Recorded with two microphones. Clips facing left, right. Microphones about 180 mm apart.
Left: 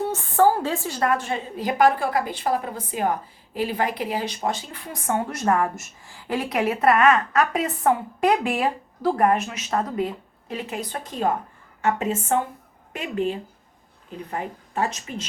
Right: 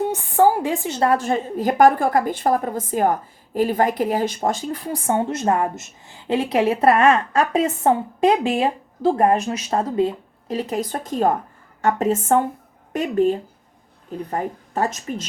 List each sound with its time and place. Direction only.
0.0 s a woman's voice: 15° right (ahead or behind)
1.1 s a woman's voice: 45° right (ahead or behind); by 10.1 s 30° right (ahead or behind)
10.5 s a woman's voice: 40° right (ahead or behind)